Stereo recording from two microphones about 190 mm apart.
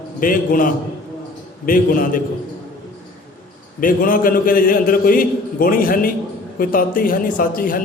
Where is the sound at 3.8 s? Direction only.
45° left (ahead or behind).